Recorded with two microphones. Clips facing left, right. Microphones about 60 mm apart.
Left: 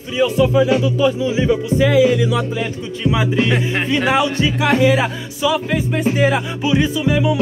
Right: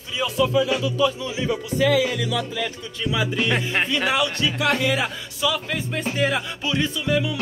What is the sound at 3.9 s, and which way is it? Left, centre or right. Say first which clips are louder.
Music: left 6 dB; left.